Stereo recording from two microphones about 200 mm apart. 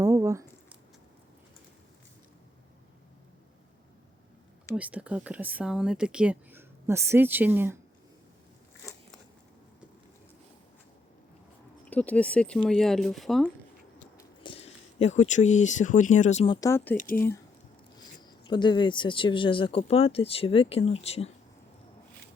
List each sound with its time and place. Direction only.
0.0 s a sound: 15° right (ahead or behind)
4.7 s speech: 5° right (ahead or behind)
11.9 s speech: 5° left (ahead or behind)
14.2 s speech: 25° left (ahead or behind)
16.6 s speech: 15° left (ahead or behind)
17.9 s speech: 20° left (ahead or behind)